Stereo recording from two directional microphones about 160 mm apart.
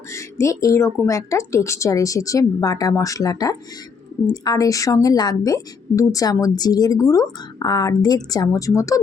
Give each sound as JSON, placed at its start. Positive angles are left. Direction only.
{"t": 0.1, "sound": "a woman's voice", "side_deg": 20}